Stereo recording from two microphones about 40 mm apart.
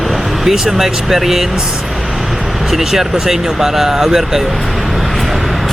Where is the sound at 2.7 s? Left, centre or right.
Centre.